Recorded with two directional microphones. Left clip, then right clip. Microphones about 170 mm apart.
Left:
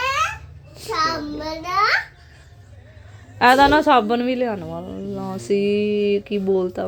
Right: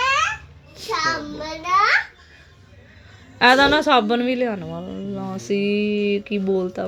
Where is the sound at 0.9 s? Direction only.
20° left (ahead or behind).